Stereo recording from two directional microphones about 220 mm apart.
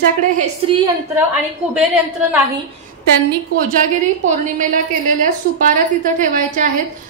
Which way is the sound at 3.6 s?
35° right (ahead or behind).